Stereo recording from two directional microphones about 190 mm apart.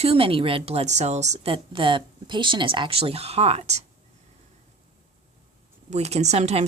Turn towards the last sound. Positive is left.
turn(degrees=-35)  # may be behind; listen again after turning